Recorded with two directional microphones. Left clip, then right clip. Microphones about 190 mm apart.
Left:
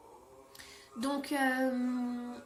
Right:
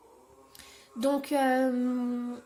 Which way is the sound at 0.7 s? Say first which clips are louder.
Right 8 dB; 35° right (ahead or behind).